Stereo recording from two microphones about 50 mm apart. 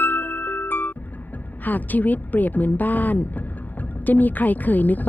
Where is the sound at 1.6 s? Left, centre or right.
Left.